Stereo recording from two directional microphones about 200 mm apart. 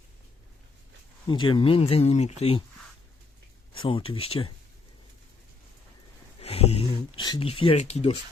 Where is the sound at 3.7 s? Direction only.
25° left (ahead or behind).